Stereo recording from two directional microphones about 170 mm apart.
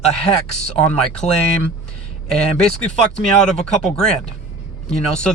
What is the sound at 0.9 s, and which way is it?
Speech, 5° left (ahead or behind).